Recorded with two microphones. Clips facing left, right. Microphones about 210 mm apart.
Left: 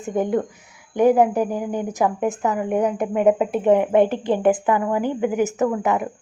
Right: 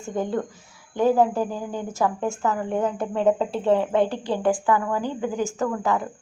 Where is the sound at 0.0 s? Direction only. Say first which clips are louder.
Left 5 dB; 20° left (ahead or behind).